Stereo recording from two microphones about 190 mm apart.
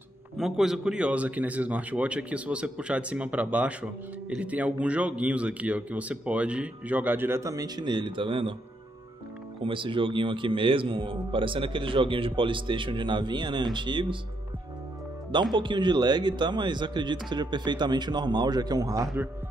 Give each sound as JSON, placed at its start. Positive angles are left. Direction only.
{"t": 0.4, "sound": "speech", "side_deg": 0}
{"t": 9.6, "sound": "a man's voice", "side_deg": -25}
{"t": 15.5, "sound": "a man's voice", "side_deg": -25}